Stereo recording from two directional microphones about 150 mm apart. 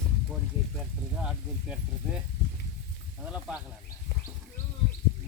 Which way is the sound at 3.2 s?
10° right (ahead or behind).